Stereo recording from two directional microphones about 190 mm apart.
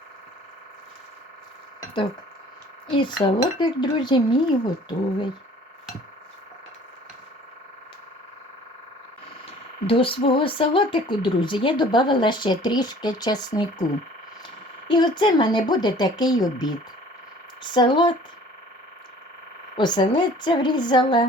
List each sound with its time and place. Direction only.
2.9 s speech: 25° left (ahead or behind)
9.8 s speech: 30° left (ahead or behind)
14.8 s speech: 25° left (ahead or behind)
19.7 s speech: 25° left (ahead or behind)